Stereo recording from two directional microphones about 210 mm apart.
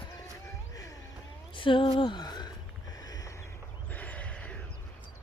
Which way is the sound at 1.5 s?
25° left (ahead or behind).